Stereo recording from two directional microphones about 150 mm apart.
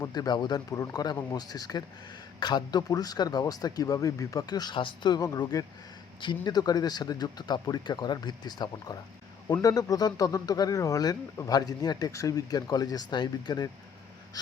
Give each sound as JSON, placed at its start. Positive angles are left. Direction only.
{"t": 0.0, "sound": "speech", "side_deg": 25}